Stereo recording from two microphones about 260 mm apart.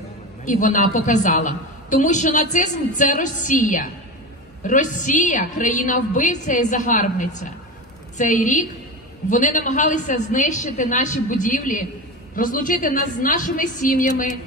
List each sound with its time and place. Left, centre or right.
0.5 s a woman's voice: left